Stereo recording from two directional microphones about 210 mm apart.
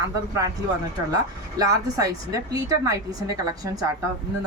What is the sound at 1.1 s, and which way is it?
A woman's voice, 15° right (ahead or behind).